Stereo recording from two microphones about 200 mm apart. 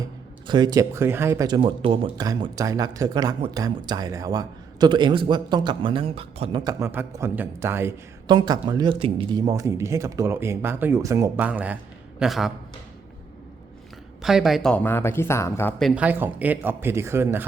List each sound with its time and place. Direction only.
0.4 s a man's voice: 20° right (ahead or behind); by 12.5 s centre (ahead or behind)
14.2 s speech: centre (ahead or behind)
15.8 s speech: 5° right (ahead or behind)